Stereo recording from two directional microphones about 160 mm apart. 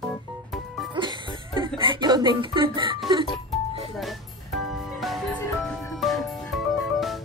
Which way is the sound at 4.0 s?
Centre (ahead or behind).